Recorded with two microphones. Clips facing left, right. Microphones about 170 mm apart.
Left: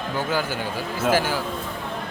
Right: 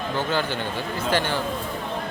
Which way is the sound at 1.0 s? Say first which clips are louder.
Left 3 dB; 5° left (ahead or behind).